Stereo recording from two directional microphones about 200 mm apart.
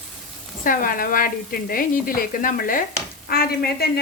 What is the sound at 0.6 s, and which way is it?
A woman's voice, 45° left (ahead or behind).